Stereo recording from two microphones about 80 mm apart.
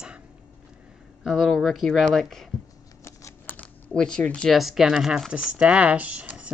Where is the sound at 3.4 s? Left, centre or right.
Centre.